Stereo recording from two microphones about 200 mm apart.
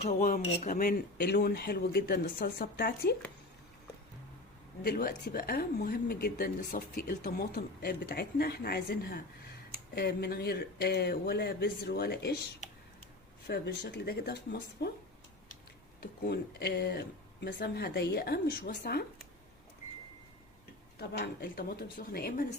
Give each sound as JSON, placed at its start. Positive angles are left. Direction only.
{"t": 0.0, "sound": "speech", "side_deg": 40}
{"t": 4.8, "sound": "speech", "side_deg": 50}
{"t": 13.5, "sound": "speech", "side_deg": 55}
{"t": 16.0, "sound": "speech", "side_deg": 55}
{"t": 21.0, "sound": "speech", "side_deg": 55}